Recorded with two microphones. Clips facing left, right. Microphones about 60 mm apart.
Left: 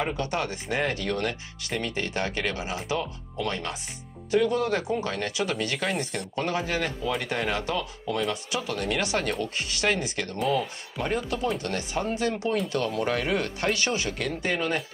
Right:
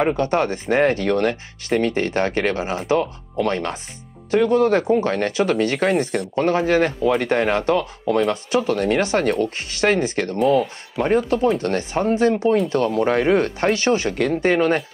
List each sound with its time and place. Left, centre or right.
0.0 s speech: right